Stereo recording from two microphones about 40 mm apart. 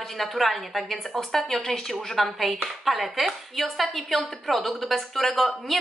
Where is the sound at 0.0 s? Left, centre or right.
Centre.